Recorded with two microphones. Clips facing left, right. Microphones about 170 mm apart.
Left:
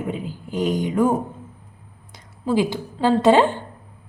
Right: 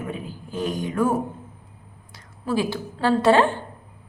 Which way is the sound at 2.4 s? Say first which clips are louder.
Left 3 dB; 15° left (ahead or behind).